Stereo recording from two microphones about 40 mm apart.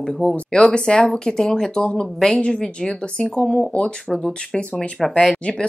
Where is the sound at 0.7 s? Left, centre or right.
Left.